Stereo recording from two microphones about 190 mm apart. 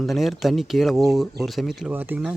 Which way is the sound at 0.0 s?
Centre (ahead or behind).